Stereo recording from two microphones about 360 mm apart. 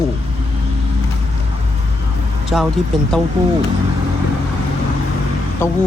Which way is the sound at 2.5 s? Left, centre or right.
Centre.